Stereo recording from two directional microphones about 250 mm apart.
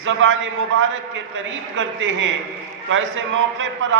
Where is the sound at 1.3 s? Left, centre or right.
Right.